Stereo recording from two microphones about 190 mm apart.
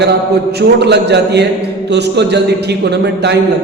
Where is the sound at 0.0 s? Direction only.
60° right (ahead or behind).